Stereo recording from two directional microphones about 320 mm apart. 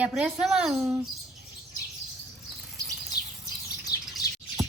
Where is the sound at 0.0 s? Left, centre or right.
Centre.